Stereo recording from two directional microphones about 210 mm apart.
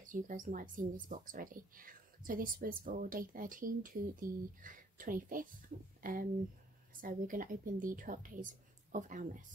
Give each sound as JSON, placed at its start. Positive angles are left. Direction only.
{"t": 0.0, "sound": "speech", "side_deg": -40}